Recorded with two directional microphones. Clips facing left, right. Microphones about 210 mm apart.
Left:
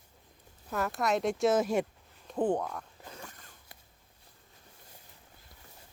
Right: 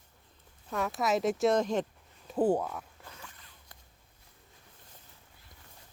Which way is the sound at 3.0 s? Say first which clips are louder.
Left 4 dB; 40° left (ahead or behind).